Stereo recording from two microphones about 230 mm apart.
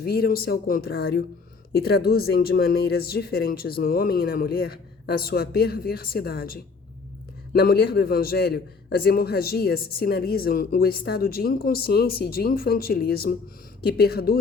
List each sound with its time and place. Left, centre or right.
0.0 s a man's voice: left